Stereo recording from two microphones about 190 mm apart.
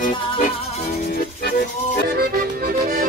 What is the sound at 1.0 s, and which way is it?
Music, 55° left (ahead or behind).